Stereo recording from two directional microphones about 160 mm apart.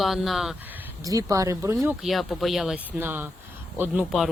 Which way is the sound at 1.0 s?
20° right (ahead or behind).